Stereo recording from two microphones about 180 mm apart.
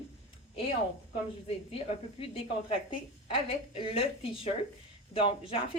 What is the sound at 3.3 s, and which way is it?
Speech, 30° left (ahead or behind).